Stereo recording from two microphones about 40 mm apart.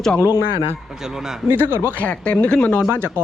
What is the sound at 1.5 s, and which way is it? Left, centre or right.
Speech, right.